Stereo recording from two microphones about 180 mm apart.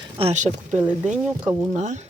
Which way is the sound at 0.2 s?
40° right (ahead or behind).